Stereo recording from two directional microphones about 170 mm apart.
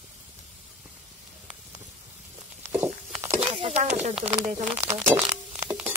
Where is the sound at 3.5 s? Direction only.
40° right (ahead or behind).